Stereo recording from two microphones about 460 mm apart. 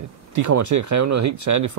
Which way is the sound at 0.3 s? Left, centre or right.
Right.